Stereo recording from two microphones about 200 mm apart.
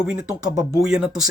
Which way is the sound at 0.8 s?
5° right (ahead or behind).